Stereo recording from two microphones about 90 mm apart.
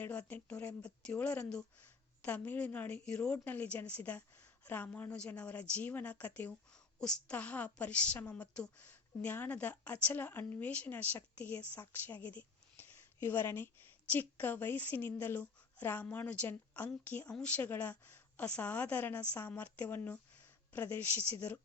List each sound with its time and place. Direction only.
0.0 s a woman's voice: 15° left (ahead or behind)